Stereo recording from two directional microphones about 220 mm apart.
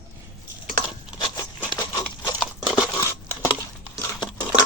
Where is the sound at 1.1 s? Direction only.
20° left (ahead or behind).